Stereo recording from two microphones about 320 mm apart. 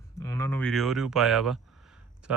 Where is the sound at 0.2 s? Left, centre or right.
Centre.